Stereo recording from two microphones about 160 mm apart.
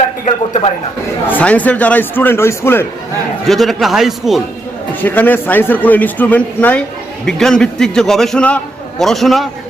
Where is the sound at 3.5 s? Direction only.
Centre (ahead or behind).